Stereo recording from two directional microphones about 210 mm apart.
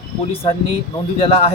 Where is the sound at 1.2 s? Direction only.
30° left (ahead or behind).